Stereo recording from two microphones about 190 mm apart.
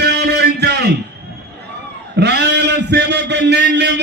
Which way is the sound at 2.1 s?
60° right (ahead or behind).